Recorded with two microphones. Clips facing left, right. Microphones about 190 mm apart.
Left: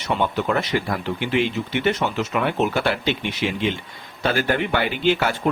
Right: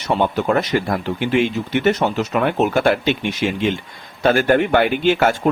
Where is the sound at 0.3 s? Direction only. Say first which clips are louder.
Right 4 dB; 45° right (ahead or behind).